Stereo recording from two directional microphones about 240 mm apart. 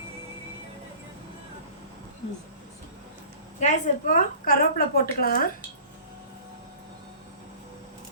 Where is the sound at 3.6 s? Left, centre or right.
Left.